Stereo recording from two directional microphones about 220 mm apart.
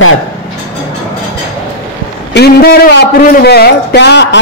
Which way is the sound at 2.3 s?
45° left (ahead or behind).